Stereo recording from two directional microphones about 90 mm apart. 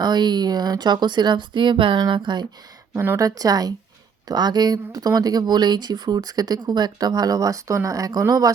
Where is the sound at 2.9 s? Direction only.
25° right (ahead or behind).